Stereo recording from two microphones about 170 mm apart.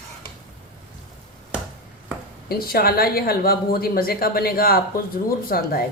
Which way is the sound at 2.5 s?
60° left (ahead or behind).